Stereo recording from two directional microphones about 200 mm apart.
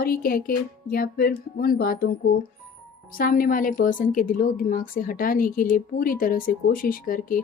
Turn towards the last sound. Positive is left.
turn(degrees=45)  # may be behind; listen again after turning